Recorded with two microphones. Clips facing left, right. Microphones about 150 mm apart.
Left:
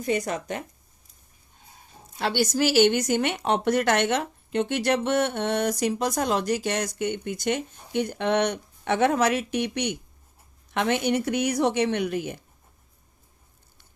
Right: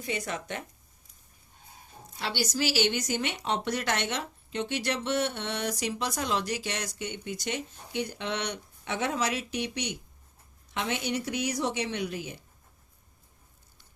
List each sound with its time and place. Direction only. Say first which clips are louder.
0.0 s speech: left 7 dB; 40° left (ahead or behind)
2.1 s a woman's voice: left 7 dB; 55° left (ahead or behind)